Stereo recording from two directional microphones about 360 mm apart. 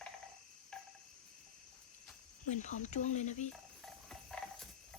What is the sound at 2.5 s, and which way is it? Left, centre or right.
Speech, centre.